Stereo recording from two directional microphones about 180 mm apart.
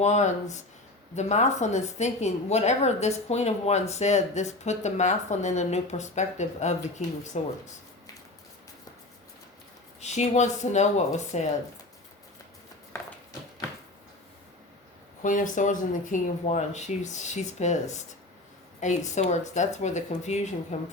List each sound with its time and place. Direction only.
0.0 s a woman's voice: 40° left (ahead or behind)
10.0 s a woman's voice: 40° left (ahead or behind)
15.2 s a woman's voice: 45° left (ahead or behind)